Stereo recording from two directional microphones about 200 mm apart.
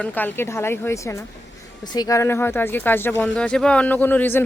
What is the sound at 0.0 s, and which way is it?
Speech, 10° left (ahead or behind).